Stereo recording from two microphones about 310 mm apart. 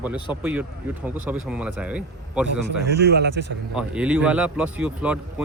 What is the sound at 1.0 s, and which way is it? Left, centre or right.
Speech, centre.